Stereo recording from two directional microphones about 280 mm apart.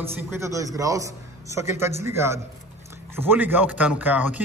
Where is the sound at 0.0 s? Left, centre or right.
Centre.